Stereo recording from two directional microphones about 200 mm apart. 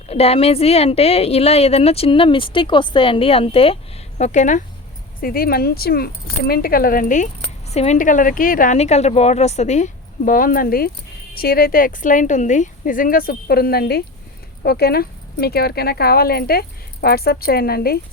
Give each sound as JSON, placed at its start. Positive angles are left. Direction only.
{"t": 0.1, "sound": "a woman's voice", "side_deg": 30}